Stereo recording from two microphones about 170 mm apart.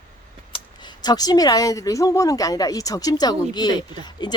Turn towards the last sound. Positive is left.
turn(degrees=25)  # may be behind; listen again after turning